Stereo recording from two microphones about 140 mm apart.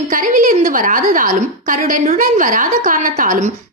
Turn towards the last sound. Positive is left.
turn(degrees=-65)  # may be behind; listen again after turning